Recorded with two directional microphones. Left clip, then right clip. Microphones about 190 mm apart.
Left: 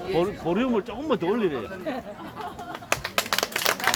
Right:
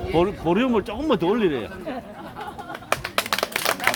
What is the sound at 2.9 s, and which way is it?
Music, 20° left (ahead or behind).